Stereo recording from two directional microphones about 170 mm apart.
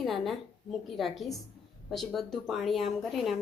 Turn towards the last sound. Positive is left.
turn(degrees=0)  # may be behind; listen again after turning